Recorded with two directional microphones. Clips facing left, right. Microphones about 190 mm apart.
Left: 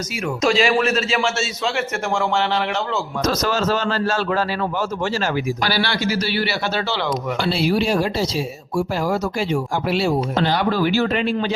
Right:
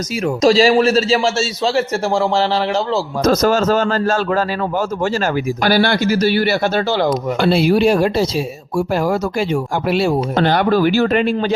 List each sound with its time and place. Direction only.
0.4 s a man's voice: 35° right (ahead or behind)
3.2 s speech: 50° right (ahead or behind)
9.9 s speech: 55° right (ahead or behind)